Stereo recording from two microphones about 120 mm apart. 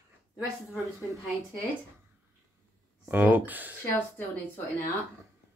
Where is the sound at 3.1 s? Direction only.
15° right (ahead or behind).